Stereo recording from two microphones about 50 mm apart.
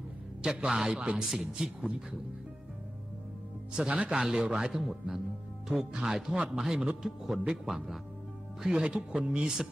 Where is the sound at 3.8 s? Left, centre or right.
Centre.